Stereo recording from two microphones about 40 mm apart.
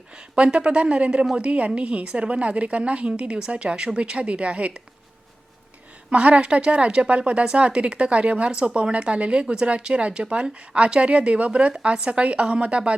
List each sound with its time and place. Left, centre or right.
0.1 s a woman's voice: right
6.1 s a woman's voice: right